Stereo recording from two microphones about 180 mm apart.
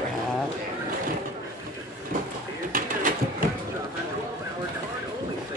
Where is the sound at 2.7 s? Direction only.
50° right (ahead or behind).